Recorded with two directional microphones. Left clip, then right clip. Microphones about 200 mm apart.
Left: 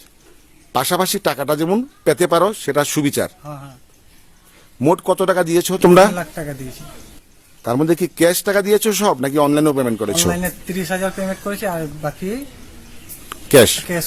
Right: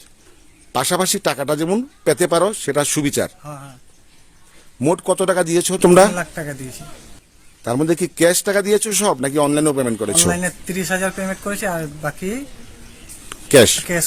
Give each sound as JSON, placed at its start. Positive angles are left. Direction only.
{"t": 0.7, "sound": "speech", "side_deg": 0}
{"t": 4.8, "sound": "speech", "side_deg": 0}